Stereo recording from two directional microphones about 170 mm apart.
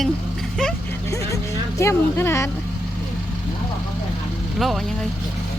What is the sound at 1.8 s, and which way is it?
Speech, 15° left (ahead or behind).